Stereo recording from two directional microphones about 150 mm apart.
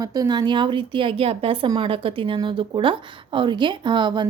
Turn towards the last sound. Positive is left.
turn(degrees=-30)  # may be behind; listen again after turning